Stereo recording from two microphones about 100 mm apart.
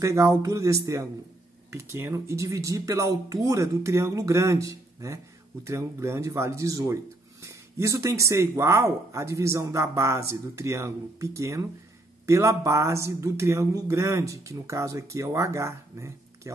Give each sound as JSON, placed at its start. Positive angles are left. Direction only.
{"t": 0.0, "sound": "speech", "side_deg": -30}